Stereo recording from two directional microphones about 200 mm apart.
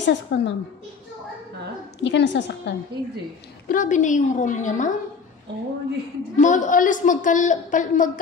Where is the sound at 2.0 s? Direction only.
60° left (ahead or behind).